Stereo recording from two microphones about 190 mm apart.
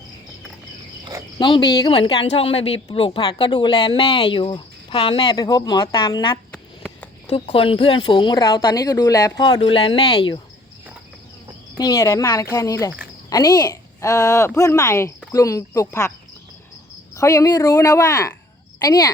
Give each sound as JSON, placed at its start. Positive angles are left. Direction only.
{"t": 1.4, "sound": "speech", "side_deg": 25}
{"t": 6.5, "sound": "a sound", "side_deg": 5}
{"t": 7.3, "sound": "speech", "side_deg": 30}
{"t": 11.8, "sound": "speech", "side_deg": 20}
{"t": 17.2, "sound": "speech", "side_deg": 15}